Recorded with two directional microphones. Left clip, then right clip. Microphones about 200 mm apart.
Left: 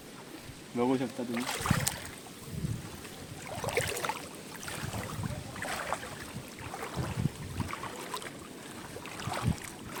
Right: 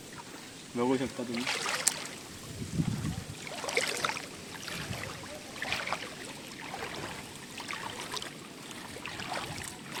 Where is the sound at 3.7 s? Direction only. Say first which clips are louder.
Right 2 dB; 35° left (ahead or behind).